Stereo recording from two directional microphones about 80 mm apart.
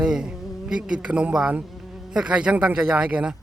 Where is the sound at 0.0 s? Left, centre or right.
Centre.